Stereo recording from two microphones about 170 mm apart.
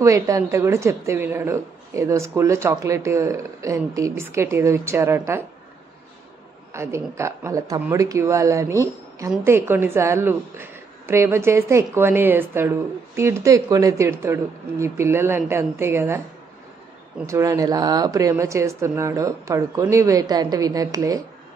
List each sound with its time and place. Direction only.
0.0 s a woman's voice: 20° right (ahead or behind)
6.7 s a woman's voice: 15° right (ahead or behind)
17.3 s speech: 20° right (ahead or behind)